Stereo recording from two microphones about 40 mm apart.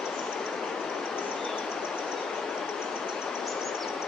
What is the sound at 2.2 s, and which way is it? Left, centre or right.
Train, centre.